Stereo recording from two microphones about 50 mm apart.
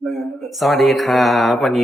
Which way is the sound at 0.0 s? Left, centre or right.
Centre.